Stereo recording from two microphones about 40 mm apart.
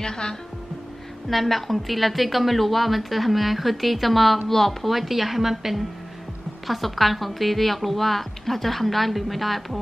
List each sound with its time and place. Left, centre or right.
0.0 s speech: centre
1.3 s a woman's voice: centre